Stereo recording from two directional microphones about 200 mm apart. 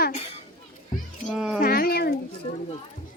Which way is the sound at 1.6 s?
50° left (ahead or behind).